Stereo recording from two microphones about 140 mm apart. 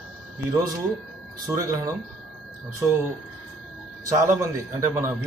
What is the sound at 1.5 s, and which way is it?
Speech, 20° right (ahead or behind).